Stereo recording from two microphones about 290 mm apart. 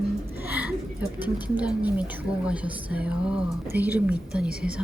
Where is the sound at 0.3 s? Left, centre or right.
Centre.